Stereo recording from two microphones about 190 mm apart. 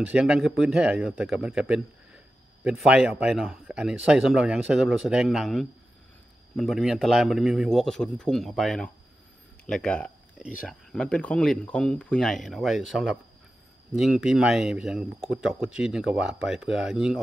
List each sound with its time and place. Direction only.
0.0 s speech: 5° right (ahead or behind)